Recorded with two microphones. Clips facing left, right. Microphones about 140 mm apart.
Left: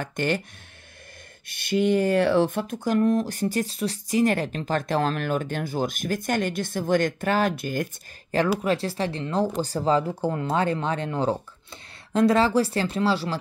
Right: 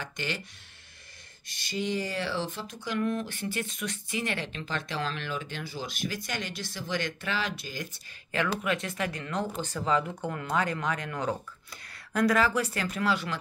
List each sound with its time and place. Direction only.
0.0 s speech: 50° left (ahead or behind)
1.5 s speech: 60° left (ahead or behind)
8.3 s speech: 35° left (ahead or behind)